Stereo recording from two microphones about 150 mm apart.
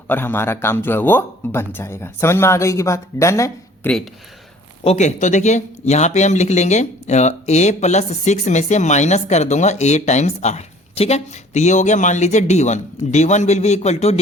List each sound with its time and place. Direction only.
0.1 s speech: 15° left (ahead or behind)
4.8 s speech: 45° left (ahead or behind)